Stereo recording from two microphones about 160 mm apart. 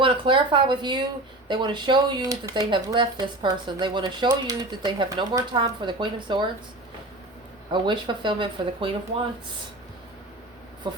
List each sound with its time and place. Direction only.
0.0 s speech: 30° right (ahead or behind)
7.7 s speech: 30° right (ahead or behind)
10.8 s speech: 30° right (ahead or behind)